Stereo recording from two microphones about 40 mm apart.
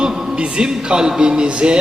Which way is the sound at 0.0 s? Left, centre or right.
Centre.